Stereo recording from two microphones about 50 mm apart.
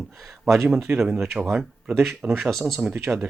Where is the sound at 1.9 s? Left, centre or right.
Centre.